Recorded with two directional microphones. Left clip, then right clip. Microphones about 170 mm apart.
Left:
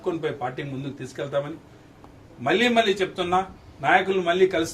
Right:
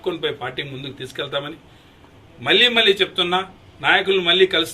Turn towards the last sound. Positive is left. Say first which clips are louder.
# right 5 dB
turn(degrees=5)  # may be behind; listen again after turning